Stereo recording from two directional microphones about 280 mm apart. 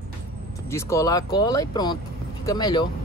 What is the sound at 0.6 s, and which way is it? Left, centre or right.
Speech, centre.